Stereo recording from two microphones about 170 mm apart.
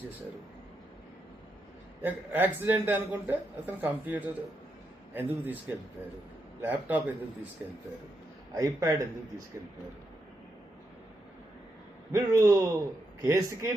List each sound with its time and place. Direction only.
2.0 s a man's voice: 10° right (ahead or behind)
8.5 s a man's voice: 20° right (ahead or behind)
12.1 s a man's voice: 20° right (ahead or behind)